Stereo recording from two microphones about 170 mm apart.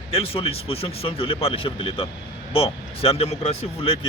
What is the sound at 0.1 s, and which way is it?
Speech, 35° left (ahead or behind).